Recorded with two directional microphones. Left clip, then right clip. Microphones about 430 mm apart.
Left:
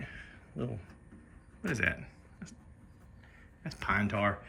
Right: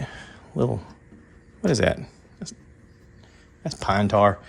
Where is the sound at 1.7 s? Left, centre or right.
Centre.